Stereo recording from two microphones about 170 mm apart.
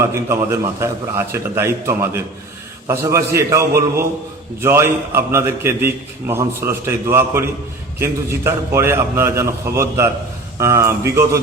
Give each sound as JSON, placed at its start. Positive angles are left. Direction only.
{"t": 0.0, "sound": "a man's voice", "side_deg": -15}